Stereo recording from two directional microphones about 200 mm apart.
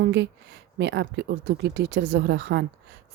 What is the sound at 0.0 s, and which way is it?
Speech, 60° right (ahead or behind).